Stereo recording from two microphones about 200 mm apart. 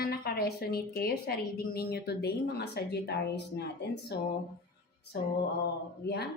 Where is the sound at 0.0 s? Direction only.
50° left (ahead or behind).